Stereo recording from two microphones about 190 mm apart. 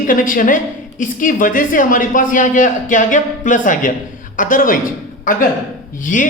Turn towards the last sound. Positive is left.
turn(degrees=45)  # may be behind; listen again after turning